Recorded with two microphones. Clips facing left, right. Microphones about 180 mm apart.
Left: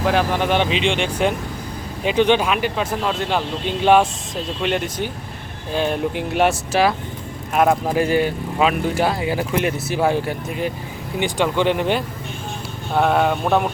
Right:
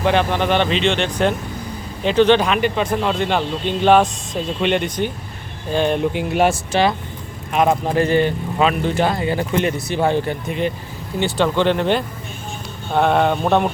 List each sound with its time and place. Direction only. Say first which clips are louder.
0.0 s speech: right 1 dB; 5° left (ahead or behind)